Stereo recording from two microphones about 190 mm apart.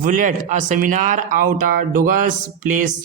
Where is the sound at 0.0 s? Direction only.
45° right (ahead or behind).